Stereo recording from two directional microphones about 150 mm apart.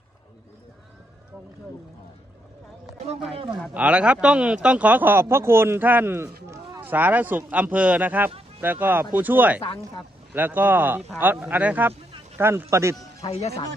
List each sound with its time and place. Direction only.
3.3 s speech: 35° right (ahead or behind)
3.8 s speech: 10° right (ahead or behind)
8.3 s a sound: 40° right (ahead or behind)
8.6 s speech: 15° right (ahead or behind)
13.2 s speech: 45° left (ahead or behind)